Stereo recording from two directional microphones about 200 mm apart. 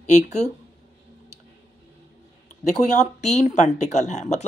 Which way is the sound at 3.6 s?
35° left (ahead or behind).